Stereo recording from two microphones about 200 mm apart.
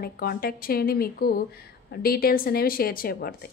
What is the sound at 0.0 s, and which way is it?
A woman's voice, 50° left (ahead or behind).